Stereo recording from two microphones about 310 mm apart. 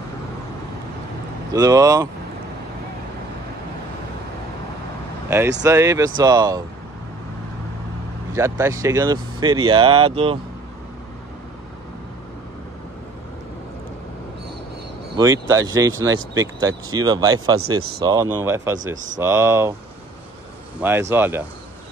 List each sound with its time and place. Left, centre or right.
1.5 s speech: centre
5.6 s speech: centre
8.4 s speech: centre
15.1 s speech: centre
17.6 s speech: right
18.0 s speech: centre
20.8 s speech: centre